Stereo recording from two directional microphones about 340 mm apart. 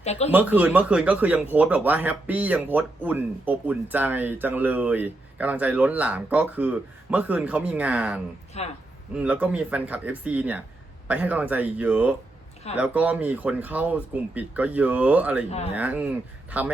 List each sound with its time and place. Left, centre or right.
0.0 s speech: centre
0.3 s speech: centre
8.6 s speech: centre
9.1 s speech: centre
15.4 s speech: centre
15.7 s speech: centre